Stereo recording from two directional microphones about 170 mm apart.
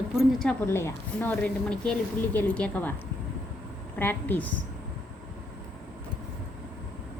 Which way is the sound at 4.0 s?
10° left (ahead or behind).